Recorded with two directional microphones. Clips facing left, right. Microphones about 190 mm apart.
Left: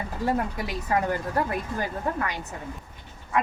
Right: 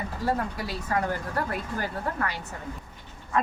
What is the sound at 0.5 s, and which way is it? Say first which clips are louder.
Speech: left 2 dB; 15° left (ahead or behind).